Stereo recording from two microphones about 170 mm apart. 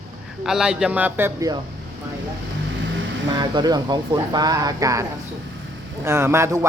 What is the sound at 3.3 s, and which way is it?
Speech, 25° right (ahead or behind).